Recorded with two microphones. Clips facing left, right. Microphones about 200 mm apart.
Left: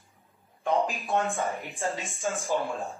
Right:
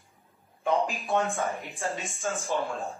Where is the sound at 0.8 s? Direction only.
Centre (ahead or behind).